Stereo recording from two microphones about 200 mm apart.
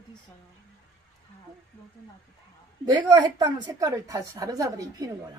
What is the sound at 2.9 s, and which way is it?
A woman's voice, 20° right (ahead or behind).